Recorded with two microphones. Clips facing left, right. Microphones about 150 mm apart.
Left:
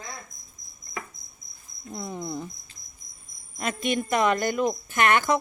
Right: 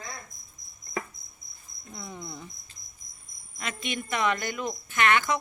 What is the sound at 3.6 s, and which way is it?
Speech, 45° left (ahead or behind).